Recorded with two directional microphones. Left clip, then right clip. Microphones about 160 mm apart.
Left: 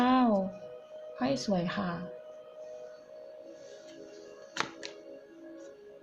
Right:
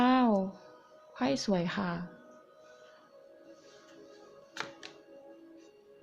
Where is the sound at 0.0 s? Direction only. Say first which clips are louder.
Even; 30° right (ahead or behind).